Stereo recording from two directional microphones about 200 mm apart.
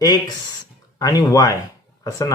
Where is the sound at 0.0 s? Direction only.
20° left (ahead or behind).